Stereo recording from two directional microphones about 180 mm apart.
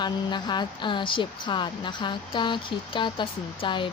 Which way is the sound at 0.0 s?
25° left (ahead or behind).